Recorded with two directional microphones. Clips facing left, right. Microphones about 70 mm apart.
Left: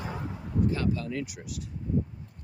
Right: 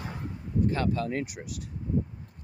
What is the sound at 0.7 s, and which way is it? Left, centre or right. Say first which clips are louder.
Speech: right 1 dB; right.